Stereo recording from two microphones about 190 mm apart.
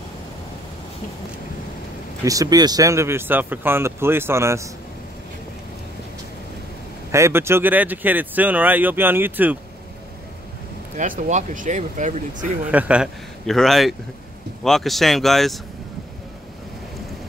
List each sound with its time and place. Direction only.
2.2 s speech: 20° right (ahead or behind)
7.1 s speech: 15° right (ahead or behind)
11.0 s speech: 40° right (ahead or behind)
12.7 s speech: 5° right (ahead or behind)